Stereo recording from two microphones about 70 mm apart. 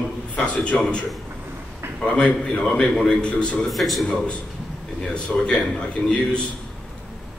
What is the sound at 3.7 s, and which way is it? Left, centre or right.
A man's voice, centre.